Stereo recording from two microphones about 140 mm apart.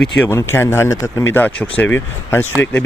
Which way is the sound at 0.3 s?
20° left (ahead or behind).